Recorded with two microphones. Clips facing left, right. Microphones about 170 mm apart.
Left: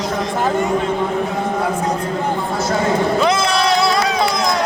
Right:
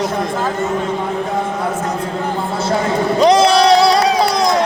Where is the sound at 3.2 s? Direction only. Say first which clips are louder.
Right 6 dB; 35° right (ahead or behind).